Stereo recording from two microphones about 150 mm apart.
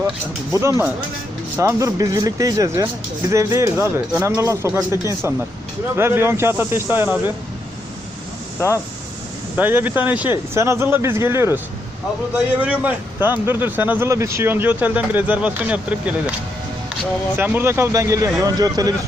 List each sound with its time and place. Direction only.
0.5 s speech: 20° right (ahead or behind)
6.0 s speech: 15° right (ahead or behind)
9.6 s speech: 10° right (ahead or behind)
12.6 s speech: 10° right (ahead or behind)
17.3 s speech: 10° right (ahead or behind)